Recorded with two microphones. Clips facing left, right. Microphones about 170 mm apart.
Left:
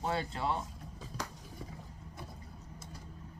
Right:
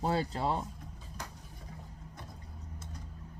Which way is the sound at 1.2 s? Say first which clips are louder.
Left 4 dB; 90° left.